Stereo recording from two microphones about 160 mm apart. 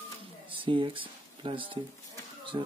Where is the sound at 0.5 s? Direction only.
35° right (ahead or behind).